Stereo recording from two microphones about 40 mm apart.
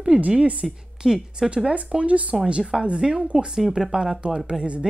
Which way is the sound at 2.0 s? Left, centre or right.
Right.